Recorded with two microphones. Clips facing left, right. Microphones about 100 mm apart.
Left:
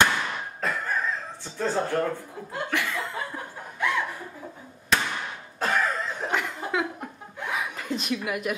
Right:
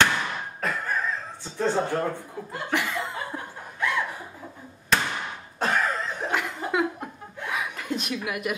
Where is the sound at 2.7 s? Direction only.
20° right (ahead or behind).